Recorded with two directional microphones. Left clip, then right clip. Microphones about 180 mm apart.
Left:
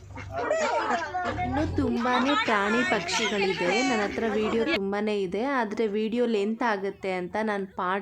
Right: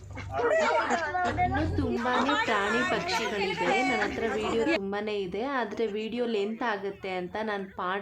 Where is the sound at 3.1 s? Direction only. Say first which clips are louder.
Left 3 dB; 50° right (ahead or behind).